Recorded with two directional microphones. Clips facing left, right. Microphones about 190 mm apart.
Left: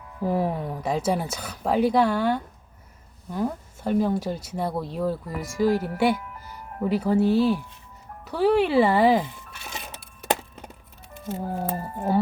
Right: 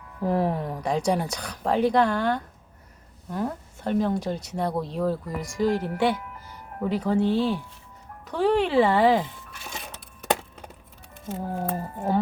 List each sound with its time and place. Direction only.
0.2 s a woman's voice: 5° left (ahead or behind)
11.1 s a woman's voice: centre (ahead or behind)